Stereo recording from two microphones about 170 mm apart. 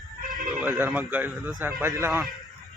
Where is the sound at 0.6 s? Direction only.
10° right (ahead or behind).